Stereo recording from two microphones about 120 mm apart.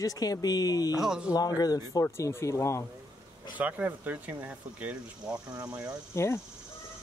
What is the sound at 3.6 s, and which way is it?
Speech, 15° right (ahead or behind).